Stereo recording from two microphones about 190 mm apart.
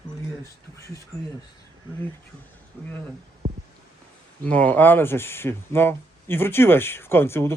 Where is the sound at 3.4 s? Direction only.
35° right (ahead or behind).